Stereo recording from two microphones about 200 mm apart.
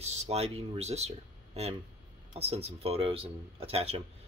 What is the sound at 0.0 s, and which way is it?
Speech, 30° right (ahead or behind).